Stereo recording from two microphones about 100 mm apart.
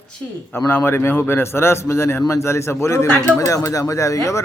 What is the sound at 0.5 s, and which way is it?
A man's voice, 25° left (ahead or behind).